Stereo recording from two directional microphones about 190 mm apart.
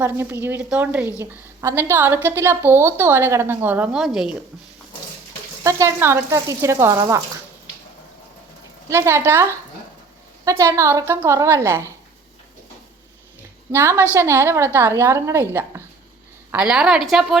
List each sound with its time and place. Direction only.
0.0 s a woman's voice: 10° right (ahead or behind)
5.6 s a woman's voice: 15° right (ahead or behind)
8.9 s a woman's voice: 15° right (ahead or behind)
13.7 s a woman's voice: 10° right (ahead or behind)